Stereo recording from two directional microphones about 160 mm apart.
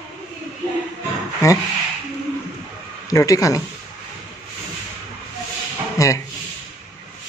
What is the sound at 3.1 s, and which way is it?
Speech, 20° left (ahead or behind).